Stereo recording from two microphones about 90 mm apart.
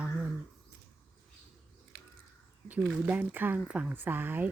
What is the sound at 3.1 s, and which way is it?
Speech, 20° right (ahead or behind).